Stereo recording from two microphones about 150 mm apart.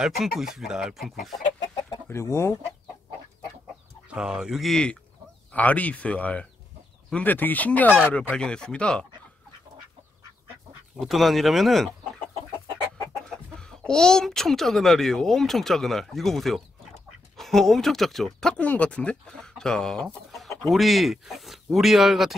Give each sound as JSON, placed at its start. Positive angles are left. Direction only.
{"t": 0.4, "sound": "speech", "side_deg": -5}
{"t": 1.6, "sound": "chicken", "side_deg": 20}
{"t": 4.1, "sound": "speech", "side_deg": -5}
{"t": 11.0, "sound": "speech", "side_deg": 0}
{"t": 13.3, "sound": "speech", "side_deg": 5}